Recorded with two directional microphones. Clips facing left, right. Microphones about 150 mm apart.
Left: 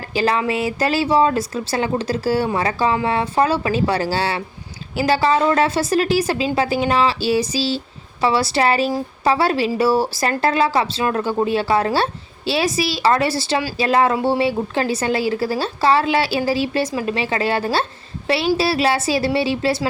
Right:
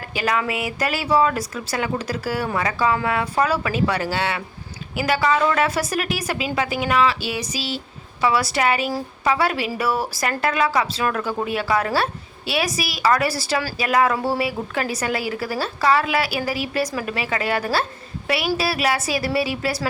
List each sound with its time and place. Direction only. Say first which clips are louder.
0.1 s a woman's voice: left 4 dB; 30° left (ahead or behind)